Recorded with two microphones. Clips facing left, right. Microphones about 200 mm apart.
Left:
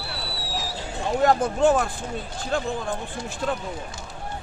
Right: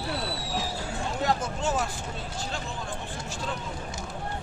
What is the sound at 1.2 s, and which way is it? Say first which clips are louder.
Speech: left 10 dB; 55° left (ahead or behind).